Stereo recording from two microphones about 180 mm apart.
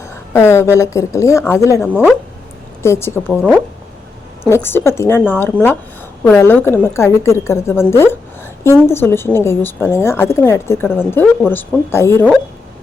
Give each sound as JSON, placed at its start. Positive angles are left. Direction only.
{"t": 0.3, "sound": "a woman's voice", "side_deg": 15}
{"t": 4.4, "sound": "a woman's voice", "side_deg": 15}